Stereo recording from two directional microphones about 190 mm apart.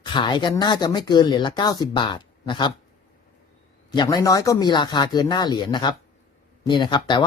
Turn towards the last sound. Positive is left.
turn(degrees=25)  # may be behind; listen again after turning